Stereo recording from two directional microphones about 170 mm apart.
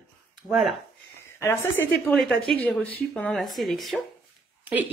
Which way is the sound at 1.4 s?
15° left (ahead or behind).